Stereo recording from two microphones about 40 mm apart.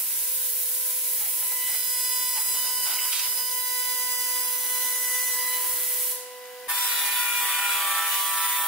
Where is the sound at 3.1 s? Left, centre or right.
Centre.